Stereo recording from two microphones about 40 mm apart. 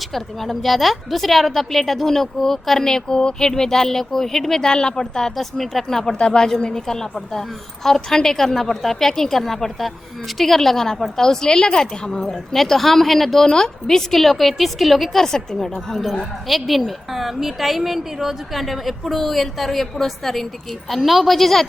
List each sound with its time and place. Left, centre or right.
0.1 s a woman's voice: centre
4.7 s a woman's voice: centre
12.3 s a woman's voice: centre